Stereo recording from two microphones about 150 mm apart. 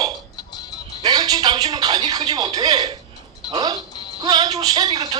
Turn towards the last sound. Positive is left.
turn(degrees=-30)  # may be behind; listen again after turning